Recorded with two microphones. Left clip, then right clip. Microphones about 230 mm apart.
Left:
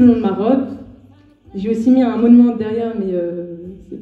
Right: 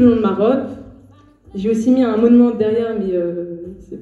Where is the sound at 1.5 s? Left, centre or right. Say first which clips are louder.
Left 1 dB; right.